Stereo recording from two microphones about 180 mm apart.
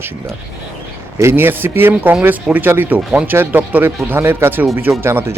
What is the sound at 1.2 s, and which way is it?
Speech, 10° right (ahead or behind).